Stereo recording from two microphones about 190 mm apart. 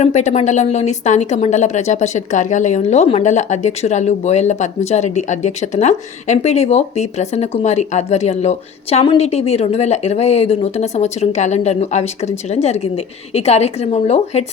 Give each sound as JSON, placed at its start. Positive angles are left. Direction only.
{"t": 0.0, "sound": "speech", "side_deg": 40}